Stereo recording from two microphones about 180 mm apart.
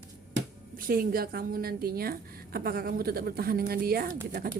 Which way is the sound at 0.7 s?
50° right (ahead or behind).